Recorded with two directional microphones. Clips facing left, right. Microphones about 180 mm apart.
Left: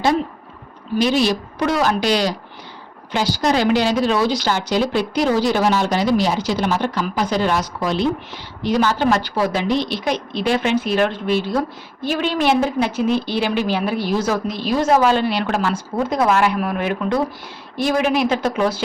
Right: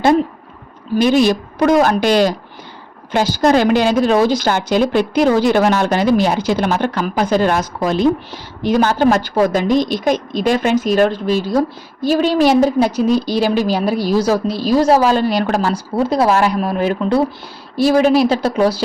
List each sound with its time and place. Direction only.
0.9 s a woman's voice: 50° right (ahead or behind)